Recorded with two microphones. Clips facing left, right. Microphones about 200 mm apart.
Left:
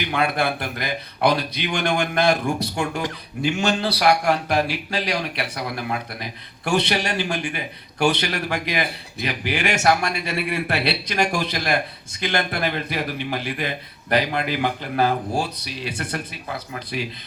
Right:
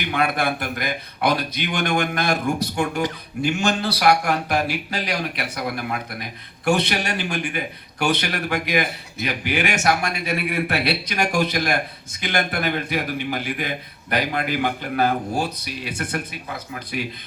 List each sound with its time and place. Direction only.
0.0 s a man's voice: 50° right (ahead or behind)